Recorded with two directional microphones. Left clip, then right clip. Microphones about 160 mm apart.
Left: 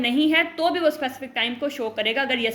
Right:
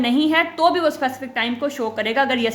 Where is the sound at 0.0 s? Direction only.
30° right (ahead or behind).